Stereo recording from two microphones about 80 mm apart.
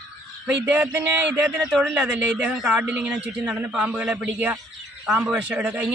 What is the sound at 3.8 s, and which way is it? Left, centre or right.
Speech, centre.